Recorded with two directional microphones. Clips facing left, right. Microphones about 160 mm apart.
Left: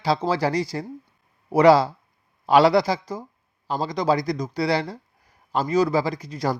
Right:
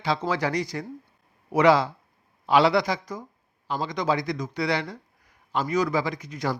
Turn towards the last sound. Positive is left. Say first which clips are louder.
# left 3 dB
turn(degrees=35)  # may be behind; listen again after turning